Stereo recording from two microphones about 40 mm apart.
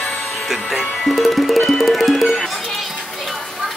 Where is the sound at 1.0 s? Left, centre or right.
Centre.